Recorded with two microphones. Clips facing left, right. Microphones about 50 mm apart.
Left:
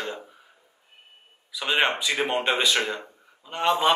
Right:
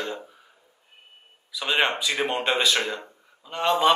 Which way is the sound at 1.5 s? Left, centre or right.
Centre.